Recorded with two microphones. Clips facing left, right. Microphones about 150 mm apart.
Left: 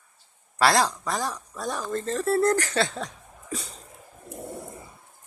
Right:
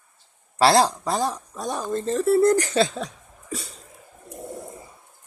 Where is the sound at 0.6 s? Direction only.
30° right (ahead or behind).